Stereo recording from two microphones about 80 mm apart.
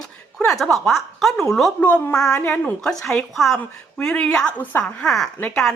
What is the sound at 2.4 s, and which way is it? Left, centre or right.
Speech, left.